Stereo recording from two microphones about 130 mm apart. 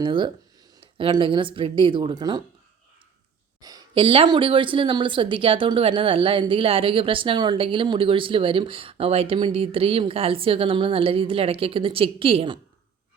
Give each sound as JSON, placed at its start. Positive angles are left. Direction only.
{"t": 0.0, "sound": "speech", "side_deg": -40}
{"t": 3.6, "sound": "a sound", "side_deg": -30}
{"t": 3.9, "sound": "speech", "side_deg": -40}